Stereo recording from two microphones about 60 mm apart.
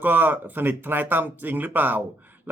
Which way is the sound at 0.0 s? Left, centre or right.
Right.